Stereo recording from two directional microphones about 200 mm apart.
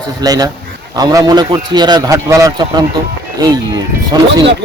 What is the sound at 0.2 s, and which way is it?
Speech, 20° right (ahead or behind).